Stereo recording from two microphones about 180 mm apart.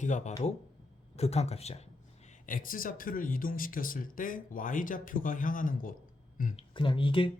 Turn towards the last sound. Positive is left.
turn(degrees=30)  # may be behind; listen again after turning